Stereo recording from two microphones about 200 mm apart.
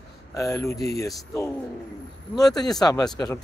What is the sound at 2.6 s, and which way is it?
Speech, 20° left (ahead or behind).